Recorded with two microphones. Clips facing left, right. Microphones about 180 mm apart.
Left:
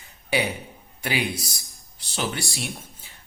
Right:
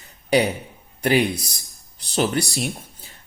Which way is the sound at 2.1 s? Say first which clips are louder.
Right 8 dB; 40° right (ahead or behind).